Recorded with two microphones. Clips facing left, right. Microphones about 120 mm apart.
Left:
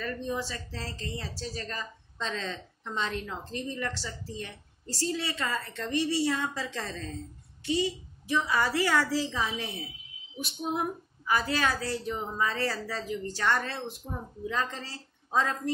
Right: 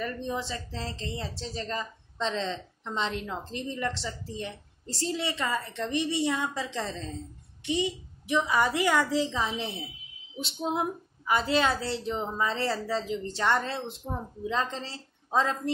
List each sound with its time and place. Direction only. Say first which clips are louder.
0.0 s speech: right 1 dB; 20° right (ahead or behind)